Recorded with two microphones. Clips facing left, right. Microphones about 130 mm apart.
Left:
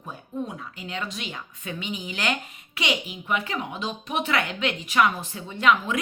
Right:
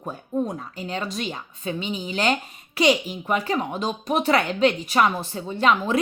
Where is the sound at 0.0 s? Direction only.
40° right (ahead or behind).